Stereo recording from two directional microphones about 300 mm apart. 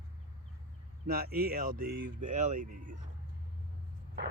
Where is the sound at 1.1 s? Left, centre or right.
Right.